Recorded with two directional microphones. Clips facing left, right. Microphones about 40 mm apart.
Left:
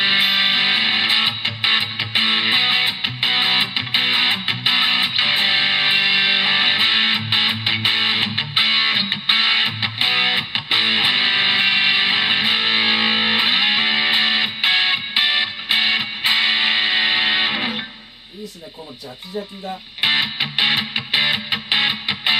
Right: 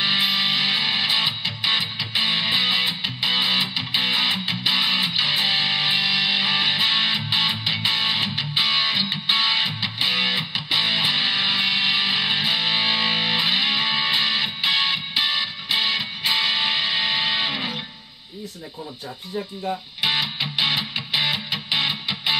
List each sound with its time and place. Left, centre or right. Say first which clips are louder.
0.0 s music: left 4 dB; left
20.0 s music: left 6 dB; left